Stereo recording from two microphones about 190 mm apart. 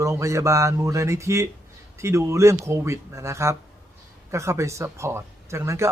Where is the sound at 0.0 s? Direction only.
15° right (ahead or behind).